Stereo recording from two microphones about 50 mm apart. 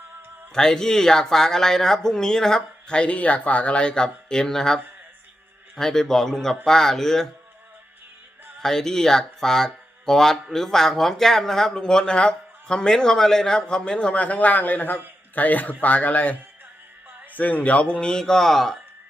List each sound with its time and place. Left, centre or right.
0.5 s speech: centre
8.6 s speech: centre